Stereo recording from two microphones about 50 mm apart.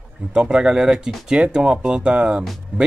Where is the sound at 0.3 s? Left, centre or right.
Centre.